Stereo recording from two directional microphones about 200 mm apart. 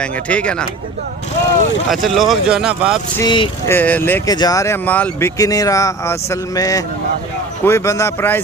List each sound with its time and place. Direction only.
0.0 s speech: 5° left (ahead or behind)
1.9 s speech: centre (ahead or behind)
3.2 s speech: 25° left (ahead or behind)
3.7 s speech: 10° left (ahead or behind)